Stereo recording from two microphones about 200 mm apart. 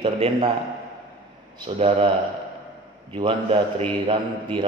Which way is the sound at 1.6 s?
25° right (ahead or behind).